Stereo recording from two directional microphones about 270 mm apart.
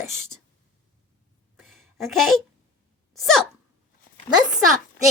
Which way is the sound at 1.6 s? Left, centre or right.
Centre.